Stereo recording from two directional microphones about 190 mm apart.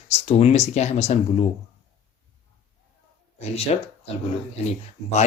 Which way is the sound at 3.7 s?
35° left (ahead or behind).